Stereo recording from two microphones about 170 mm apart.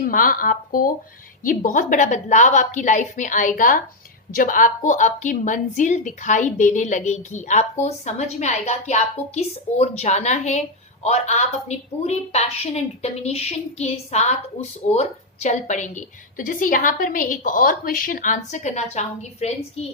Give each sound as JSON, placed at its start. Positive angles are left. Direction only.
{"t": 0.0, "sound": "a woman's voice", "side_deg": 55}